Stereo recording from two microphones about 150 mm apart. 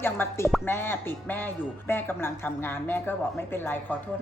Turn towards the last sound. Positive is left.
turn(degrees=10)  # may be behind; listen again after turning